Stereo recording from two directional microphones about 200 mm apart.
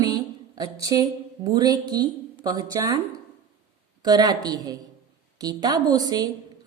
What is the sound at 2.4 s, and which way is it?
Speech, 15° right (ahead or behind).